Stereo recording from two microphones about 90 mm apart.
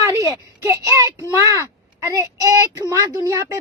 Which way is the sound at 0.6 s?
35° right (ahead or behind).